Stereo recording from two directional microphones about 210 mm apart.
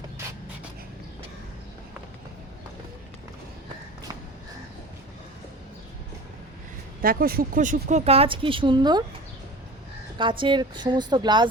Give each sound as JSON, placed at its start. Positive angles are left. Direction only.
{"t": 7.0, "sound": "speech", "side_deg": -45}
{"t": 10.2, "sound": "speech", "side_deg": -20}